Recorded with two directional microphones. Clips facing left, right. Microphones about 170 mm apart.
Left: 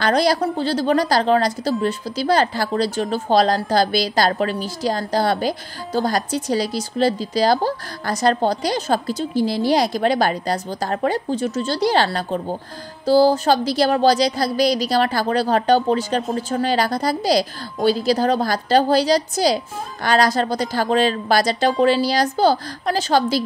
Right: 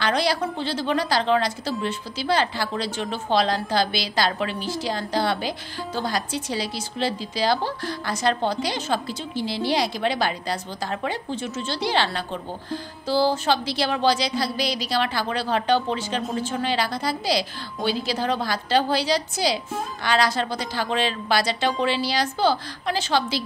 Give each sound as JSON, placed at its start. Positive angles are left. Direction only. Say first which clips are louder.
{"t": 0.0, "sound": "a woman's voice", "louder": "left 5 dB", "side_deg": 40}